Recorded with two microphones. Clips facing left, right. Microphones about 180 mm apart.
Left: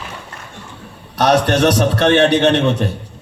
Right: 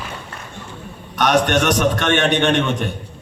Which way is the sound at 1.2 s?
35° left (ahead or behind).